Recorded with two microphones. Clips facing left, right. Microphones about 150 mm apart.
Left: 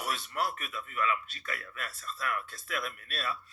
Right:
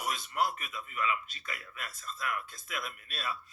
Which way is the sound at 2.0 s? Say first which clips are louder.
Left 1 dB; 50° left (ahead or behind).